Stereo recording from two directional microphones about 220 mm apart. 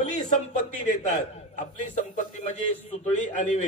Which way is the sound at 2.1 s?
30° left (ahead or behind).